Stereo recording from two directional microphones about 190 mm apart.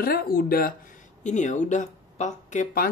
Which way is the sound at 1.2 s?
40° left (ahead or behind).